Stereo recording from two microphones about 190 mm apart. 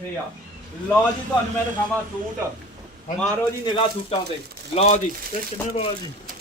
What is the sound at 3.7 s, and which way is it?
A man's voice, 25° left (ahead or behind).